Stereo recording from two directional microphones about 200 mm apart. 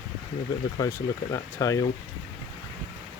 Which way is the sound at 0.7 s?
15° left (ahead or behind).